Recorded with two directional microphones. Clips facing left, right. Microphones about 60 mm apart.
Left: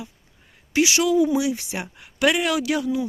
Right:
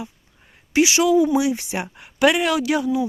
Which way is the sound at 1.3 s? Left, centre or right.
Right.